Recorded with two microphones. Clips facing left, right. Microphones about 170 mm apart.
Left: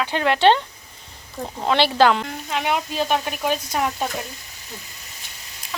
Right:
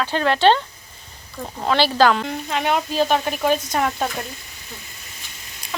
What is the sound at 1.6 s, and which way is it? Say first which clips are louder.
Speech: even; 20° left (ahead or behind).